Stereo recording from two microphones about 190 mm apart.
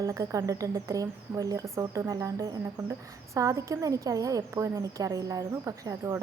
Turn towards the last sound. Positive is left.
turn(degrees=-15)  # may be behind; listen again after turning